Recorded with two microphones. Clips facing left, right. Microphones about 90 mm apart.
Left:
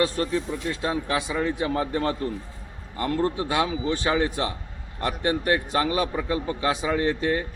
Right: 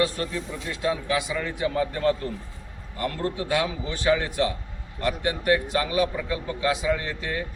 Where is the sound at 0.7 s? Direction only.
35° left (ahead or behind).